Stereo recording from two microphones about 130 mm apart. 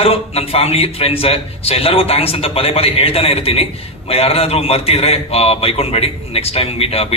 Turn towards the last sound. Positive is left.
turn(degrees=50)  # may be behind; listen again after turning